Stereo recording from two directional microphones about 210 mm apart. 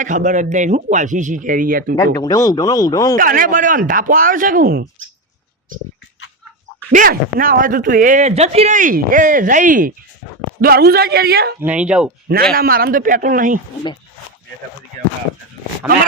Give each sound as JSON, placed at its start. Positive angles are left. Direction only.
{"t": 0.0, "sound": "speech", "side_deg": -35}
{"t": 2.1, "sound": "speech", "side_deg": 15}
{"t": 3.2, "sound": "speech", "side_deg": -40}
{"t": 6.9, "sound": "a man's voice", "side_deg": -40}
{"t": 11.6, "sound": "speech", "side_deg": -5}
{"t": 12.5, "sound": "speech", "side_deg": -45}
{"t": 15.9, "sound": "speech", "side_deg": -5}